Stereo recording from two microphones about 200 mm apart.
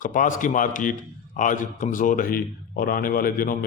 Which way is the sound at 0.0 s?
40° left (ahead or behind).